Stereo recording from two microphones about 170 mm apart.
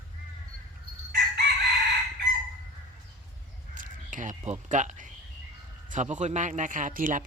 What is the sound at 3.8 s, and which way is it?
Bleat, 50° right (ahead or behind).